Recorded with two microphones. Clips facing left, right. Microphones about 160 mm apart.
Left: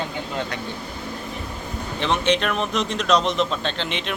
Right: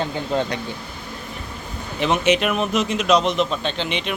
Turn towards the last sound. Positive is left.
turn(degrees=0)  # may be behind; listen again after turning